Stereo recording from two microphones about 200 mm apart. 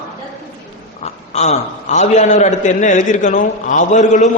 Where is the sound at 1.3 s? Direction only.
35° left (ahead or behind).